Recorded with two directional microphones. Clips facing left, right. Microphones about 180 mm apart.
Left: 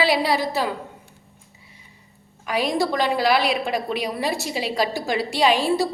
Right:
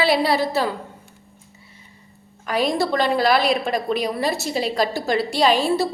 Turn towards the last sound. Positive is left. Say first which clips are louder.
# right 1 dB
turn(degrees=15)  # may be behind; listen again after turning